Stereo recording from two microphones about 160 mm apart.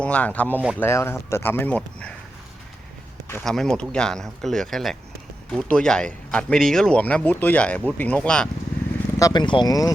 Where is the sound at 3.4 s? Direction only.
5° left (ahead or behind).